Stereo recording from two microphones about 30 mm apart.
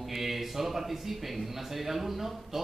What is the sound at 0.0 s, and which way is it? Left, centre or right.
A man's voice, centre.